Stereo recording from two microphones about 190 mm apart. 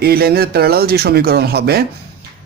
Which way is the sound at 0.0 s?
55° right (ahead or behind).